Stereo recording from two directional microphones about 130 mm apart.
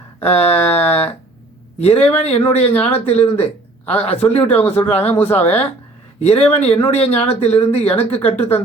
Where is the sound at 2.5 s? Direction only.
50° left (ahead or behind).